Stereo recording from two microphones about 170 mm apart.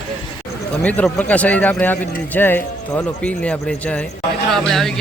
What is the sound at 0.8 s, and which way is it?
A man's voice, 5° left (ahead or behind).